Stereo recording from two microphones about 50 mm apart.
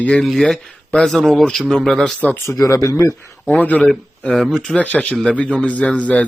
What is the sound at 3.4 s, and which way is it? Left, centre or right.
Speech, left.